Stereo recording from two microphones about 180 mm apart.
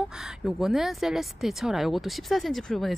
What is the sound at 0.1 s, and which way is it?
A woman's voice, 5° right (ahead or behind).